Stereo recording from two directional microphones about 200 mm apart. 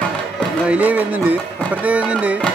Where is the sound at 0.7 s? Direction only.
5° right (ahead or behind).